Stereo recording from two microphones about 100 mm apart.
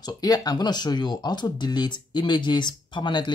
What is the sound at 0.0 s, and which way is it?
Speech, 40° left (ahead or behind).